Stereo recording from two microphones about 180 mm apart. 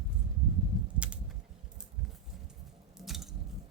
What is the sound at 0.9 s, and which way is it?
Typing, 5° right (ahead or behind).